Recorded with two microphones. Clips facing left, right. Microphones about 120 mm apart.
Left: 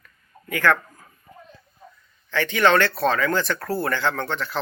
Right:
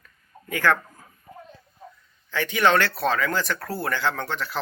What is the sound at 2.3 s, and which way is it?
Speech, 10° right (ahead or behind).